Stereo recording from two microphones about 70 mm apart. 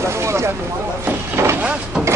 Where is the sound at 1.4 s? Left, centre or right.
Right.